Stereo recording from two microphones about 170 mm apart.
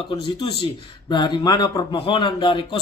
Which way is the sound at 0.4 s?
30° left (ahead or behind).